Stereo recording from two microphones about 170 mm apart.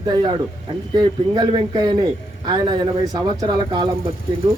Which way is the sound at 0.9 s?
25° right (ahead or behind).